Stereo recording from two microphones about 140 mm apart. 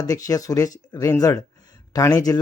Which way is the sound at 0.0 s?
25° left (ahead or behind).